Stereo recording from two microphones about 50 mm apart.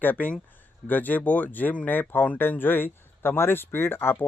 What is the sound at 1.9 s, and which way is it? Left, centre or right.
A man's voice, left.